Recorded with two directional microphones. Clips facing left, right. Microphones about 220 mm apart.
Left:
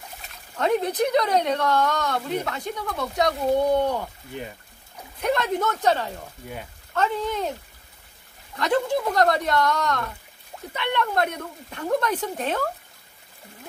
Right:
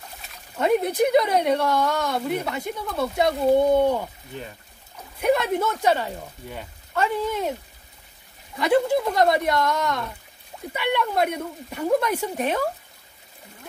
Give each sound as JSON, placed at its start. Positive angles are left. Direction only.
{"t": 0.6, "sound": "speech", "side_deg": -10}
{"t": 5.2, "sound": "speech", "side_deg": -10}
{"t": 8.5, "sound": "speech", "side_deg": -10}